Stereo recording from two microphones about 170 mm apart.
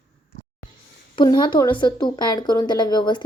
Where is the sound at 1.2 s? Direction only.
25° left (ahead or behind).